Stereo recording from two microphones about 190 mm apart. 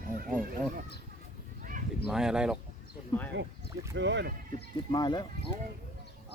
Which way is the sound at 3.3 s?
65° right (ahead or behind).